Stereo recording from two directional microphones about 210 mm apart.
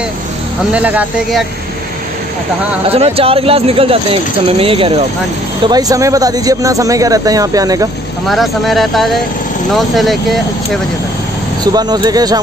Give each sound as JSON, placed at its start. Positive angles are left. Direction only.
{"t": 0.7, "sound": "speech", "side_deg": -5}
{"t": 2.9, "sound": "speech", "side_deg": -25}
{"t": 8.3, "sound": "speech", "side_deg": 0}
{"t": 11.6, "sound": "speech", "side_deg": -20}